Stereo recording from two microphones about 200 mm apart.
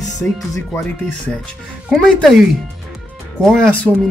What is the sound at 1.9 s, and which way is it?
Speech, 5° left (ahead or behind).